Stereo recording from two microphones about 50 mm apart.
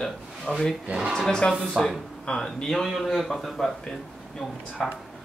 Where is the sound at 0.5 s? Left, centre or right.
Left.